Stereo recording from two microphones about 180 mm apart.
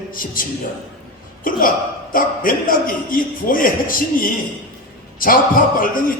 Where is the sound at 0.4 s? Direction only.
50° left (ahead or behind).